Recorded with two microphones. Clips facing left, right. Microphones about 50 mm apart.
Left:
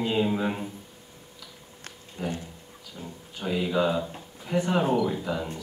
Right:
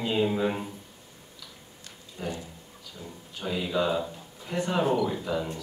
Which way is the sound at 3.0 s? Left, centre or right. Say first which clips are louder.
Left 2 dB; left.